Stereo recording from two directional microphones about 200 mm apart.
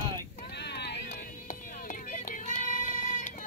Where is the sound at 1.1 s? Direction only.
45° left (ahead or behind).